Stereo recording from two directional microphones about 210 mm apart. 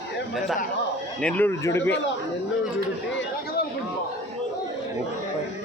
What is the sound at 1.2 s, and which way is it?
Speech, 10° left (ahead or behind).